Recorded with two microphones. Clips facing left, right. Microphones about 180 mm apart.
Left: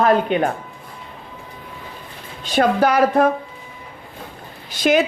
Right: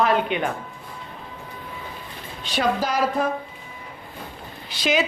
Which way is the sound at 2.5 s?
55° left (ahead or behind).